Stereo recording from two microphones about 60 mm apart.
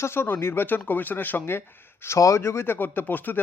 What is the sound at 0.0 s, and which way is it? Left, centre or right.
Speech, left.